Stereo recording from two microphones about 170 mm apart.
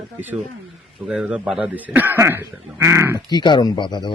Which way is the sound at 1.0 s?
5° right (ahead or behind).